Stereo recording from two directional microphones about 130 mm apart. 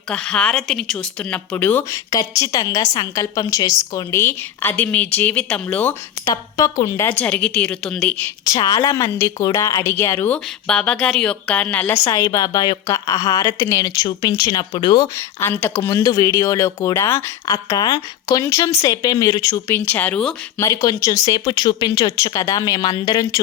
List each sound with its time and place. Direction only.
0.1 s a woman's voice: 5° left (ahead or behind)
6.2 s a woman's voice: 30° left (ahead or behind); by 8.3 s 10° left (ahead or behind)
8.4 s a woman's voice: 30° left (ahead or behind)
14.4 s speech: 40° left (ahead or behind)
15.4 s a woman's voice: 15° left (ahead or behind)
20.6 s a woman's voice: 25° left (ahead or behind)